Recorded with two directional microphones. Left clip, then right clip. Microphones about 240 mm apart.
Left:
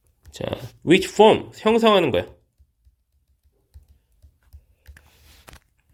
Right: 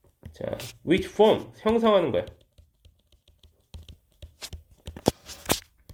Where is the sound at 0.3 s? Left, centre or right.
Left.